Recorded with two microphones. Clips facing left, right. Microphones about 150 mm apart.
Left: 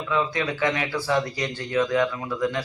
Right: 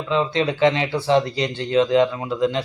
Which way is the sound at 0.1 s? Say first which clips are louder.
Right 5 dB; 25° right (ahead or behind).